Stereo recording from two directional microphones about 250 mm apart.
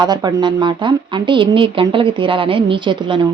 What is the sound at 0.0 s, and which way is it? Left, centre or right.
A woman's voice, centre.